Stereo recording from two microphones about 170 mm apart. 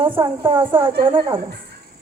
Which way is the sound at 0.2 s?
30° right (ahead or behind).